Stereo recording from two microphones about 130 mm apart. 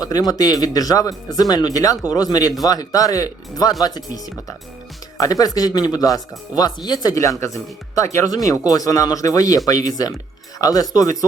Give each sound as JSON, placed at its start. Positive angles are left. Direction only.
{"t": 0.0, "sound": "speech", "side_deg": 30}